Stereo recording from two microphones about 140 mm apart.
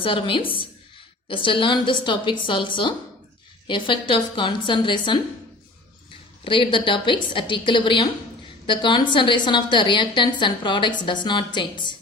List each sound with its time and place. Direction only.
0.0 s a woman's voice: 40° left (ahead or behind)
6.4 s a woman's voice: 35° left (ahead or behind)